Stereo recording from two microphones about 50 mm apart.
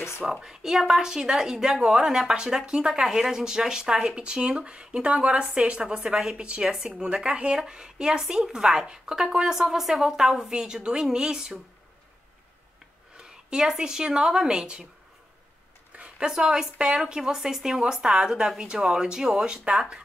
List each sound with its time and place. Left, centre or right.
0.2 s speech: centre
13.2 s speech: centre
16.3 s speech: centre